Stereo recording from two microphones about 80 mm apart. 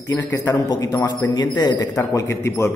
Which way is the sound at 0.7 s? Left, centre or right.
Left.